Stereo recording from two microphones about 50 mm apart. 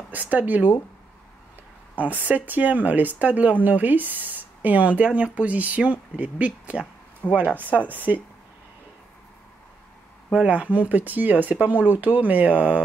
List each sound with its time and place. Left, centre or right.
0.1 s speech: right
2.0 s speech: right
10.3 s speech: right